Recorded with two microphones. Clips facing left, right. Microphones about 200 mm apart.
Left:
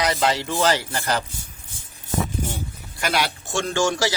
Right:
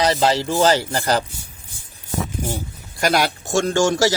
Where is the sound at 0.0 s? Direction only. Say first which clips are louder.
Right 4 dB; 30° right (ahead or behind).